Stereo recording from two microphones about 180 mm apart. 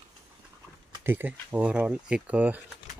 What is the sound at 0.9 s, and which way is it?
Speech, 10° right (ahead or behind).